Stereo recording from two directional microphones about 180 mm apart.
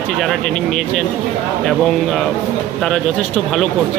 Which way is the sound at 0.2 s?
Centre (ahead or behind).